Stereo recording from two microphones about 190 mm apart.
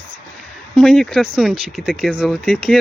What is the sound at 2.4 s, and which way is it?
Speech, 5° left (ahead or behind).